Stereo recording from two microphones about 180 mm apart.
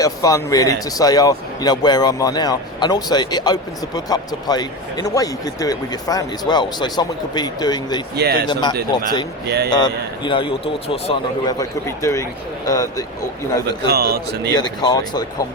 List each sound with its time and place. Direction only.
0.0 s a man's voice: 20° left (ahead or behind)
8.1 s a man's voice: 65° right (ahead or behind)
8.9 s a man's voice: 20° left (ahead or behind)
11.4 s a man's voice: 15° left (ahead or behind)
13.8 s a man's voice: 60° right (ahead or behind)
14.5 s a man's voice: 25° left (ahead or behind)